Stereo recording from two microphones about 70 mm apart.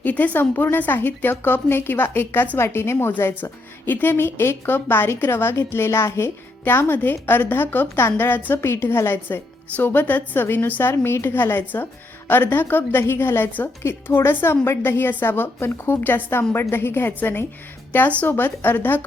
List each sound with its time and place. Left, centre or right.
0.0 s a woman's voice: left